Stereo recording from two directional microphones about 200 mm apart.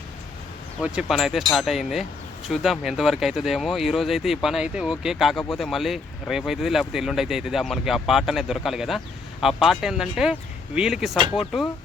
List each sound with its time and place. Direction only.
0.8 s speech: 5° right (ahead or behind)